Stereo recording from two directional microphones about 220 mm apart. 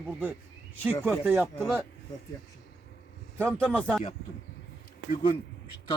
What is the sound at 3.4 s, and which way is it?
Speech, 5° left (ahead or behind).